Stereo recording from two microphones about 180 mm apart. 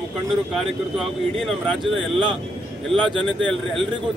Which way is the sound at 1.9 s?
30° right (ahead or behind).